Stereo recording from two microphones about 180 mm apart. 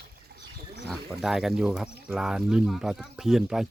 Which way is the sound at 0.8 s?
Centre (ahead or behind).